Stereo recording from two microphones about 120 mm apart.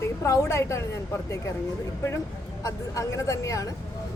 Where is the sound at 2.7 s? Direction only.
25° left (ahead or behind).